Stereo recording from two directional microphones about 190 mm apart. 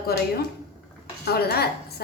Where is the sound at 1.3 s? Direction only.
55° left (ahead or behind).